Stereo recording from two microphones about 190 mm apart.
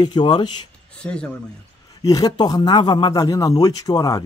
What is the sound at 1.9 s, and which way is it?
A man's voice, 20° left (ahead or behind).